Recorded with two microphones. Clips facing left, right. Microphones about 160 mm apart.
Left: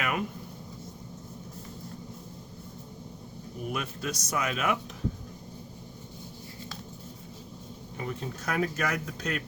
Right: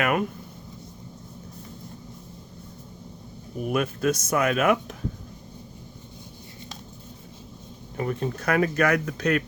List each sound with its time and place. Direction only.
0.0 s a sound: 55° right (ahead or behind)
3.7 s speech: 55° right (ahead or behind)
7.9 s speech: 60° right (ahead or behind)